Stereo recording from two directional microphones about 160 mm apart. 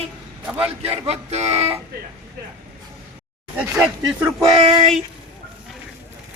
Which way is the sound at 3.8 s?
5° right (ahead or behind).